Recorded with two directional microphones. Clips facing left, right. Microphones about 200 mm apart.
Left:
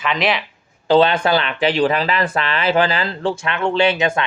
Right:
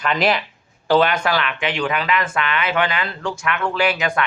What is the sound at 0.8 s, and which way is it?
Speech, 25° left (ahead or behind).